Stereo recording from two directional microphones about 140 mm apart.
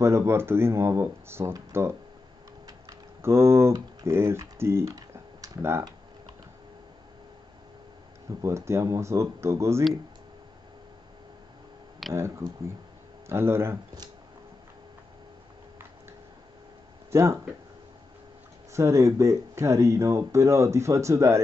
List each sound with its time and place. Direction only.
0.0 s speech: 20° right (ahead or behind)
2.6 s typing: 20° right (ahead or behind)
8.3 s speech: 20° right (ahead or behind)
12.1 s speech: 20° right (ahead or behind)
17.1 s speech: 20° right (ahead or behind)
18.7 s speech: 20° right (ahead or behind)